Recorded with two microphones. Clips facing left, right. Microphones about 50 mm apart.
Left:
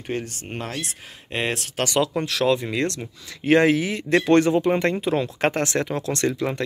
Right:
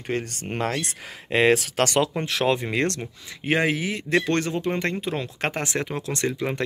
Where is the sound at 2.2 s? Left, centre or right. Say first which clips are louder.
Left 2 dB; right.